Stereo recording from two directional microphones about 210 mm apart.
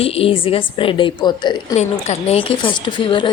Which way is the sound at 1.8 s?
30° left (ahead or behind).